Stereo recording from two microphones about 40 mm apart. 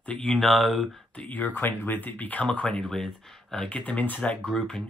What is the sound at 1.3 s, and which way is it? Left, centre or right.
Speech, left.